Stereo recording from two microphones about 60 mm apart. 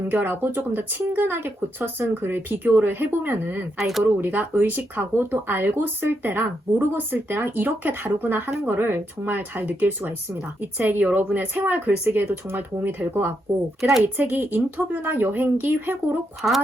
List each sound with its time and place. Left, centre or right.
0.1 s speech: right
3.8 s speech: centre
4.0 s speech: right
16.4 s speech: centre